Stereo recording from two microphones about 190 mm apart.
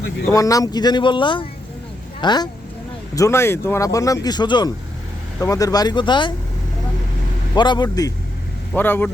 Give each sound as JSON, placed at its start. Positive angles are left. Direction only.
{"t": 0.3, "sound": "speech", "side_deg": 15}
{"t": 7.5, "sound": "speech", "side_deg": 25}
{"t": 8.7, "sound": "speech", "side_deg": 10}